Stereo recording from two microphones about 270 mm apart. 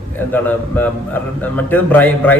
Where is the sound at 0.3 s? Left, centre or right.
Centre.